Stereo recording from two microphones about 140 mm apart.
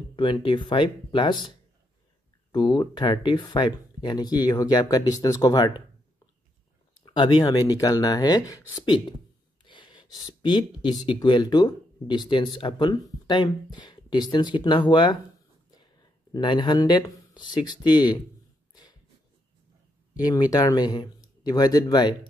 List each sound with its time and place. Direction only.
0.1 s speech: 35° left (ahead or behind)
2.5 s speech: 30° left (ahead or behind)
7.1 s speech: 35° left (ahead or behind)
18.7 s a sound: 30° left (ahead or behind)
20.2 s speech: 30° left (ahead or behind)